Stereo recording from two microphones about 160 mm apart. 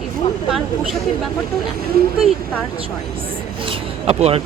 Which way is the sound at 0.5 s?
Centre (ahead or behind).